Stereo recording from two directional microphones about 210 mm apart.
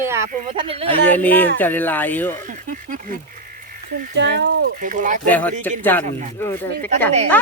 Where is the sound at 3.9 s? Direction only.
50° right (ahead or behind).